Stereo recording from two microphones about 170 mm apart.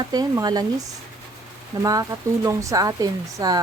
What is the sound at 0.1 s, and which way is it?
Speech, 20° right (ahead or behind).